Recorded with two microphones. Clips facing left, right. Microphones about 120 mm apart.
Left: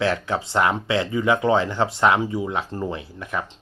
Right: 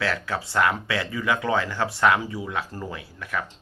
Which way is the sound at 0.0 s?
20° left (ahead or behind).